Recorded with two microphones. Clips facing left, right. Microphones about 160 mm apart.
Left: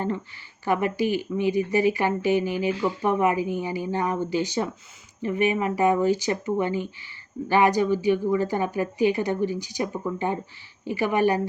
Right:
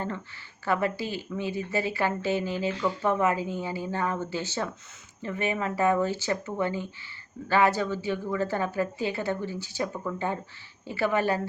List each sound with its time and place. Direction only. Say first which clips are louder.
0.6 s speech: left 4 dB; 15° left (ahead or behind)